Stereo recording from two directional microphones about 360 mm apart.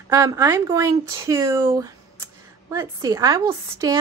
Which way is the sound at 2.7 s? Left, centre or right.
Centre.